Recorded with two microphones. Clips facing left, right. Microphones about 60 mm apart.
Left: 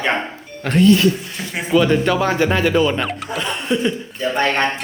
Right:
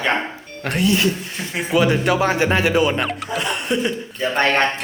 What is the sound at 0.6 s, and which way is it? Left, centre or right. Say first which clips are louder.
Speech: left 5 dB; centre.